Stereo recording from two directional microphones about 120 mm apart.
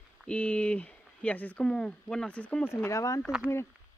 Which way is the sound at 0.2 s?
10° left (ahead or behind).